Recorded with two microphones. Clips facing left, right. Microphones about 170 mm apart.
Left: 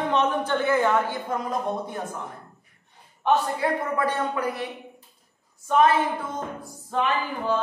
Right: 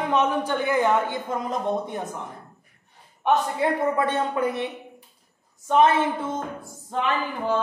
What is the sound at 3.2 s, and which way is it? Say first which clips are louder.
A man's voice: right 1 dB; 20° right (ahead or behind).